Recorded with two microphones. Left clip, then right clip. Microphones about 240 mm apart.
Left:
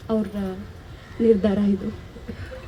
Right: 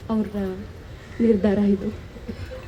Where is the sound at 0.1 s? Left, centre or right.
Left.